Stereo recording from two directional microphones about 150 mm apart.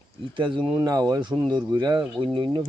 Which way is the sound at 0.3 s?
35° right (ahead or behind).